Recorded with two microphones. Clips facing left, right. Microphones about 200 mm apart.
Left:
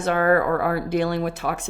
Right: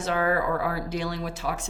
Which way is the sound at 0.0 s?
55° left (ahead or behind).